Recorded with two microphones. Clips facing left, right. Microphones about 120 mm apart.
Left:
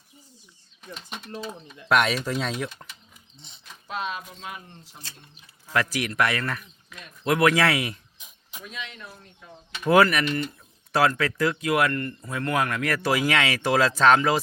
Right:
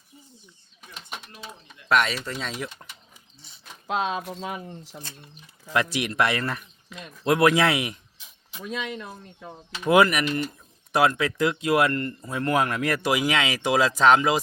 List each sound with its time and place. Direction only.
1.9 s speech: centre (ahead or behind)
3.8 s speech: 80° right
5.7 s speech: 20° right (ahead or behind)
9.9 s speech: 15° right (ahead or behind)